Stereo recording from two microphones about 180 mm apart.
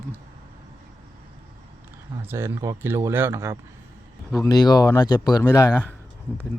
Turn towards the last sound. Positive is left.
turn(degrees=15)  # may be behind; listen again after turning